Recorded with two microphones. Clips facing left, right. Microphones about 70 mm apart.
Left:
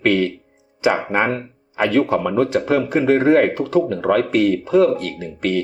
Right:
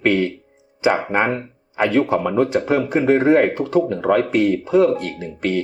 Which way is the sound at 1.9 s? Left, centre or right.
Centre.